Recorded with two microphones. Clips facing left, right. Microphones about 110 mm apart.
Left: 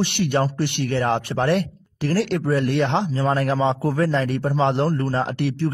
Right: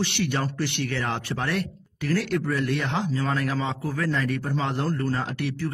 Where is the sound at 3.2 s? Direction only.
35° left (ahead or behind).